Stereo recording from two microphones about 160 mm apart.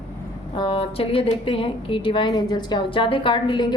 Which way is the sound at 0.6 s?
35° left (ahead or behind).